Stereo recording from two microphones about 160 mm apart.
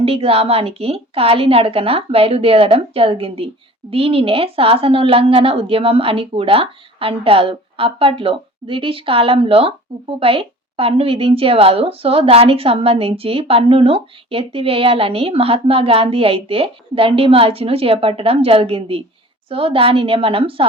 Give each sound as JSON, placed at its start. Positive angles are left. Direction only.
{"t": 0.0, "sound": "a woman's voice", "side_deg": -35}